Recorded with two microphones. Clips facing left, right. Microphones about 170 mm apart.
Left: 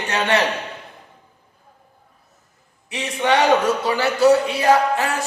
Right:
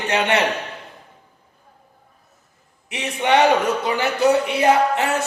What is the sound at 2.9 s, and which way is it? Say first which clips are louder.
Speech: right 1 dB; 20° right (ahead or behind).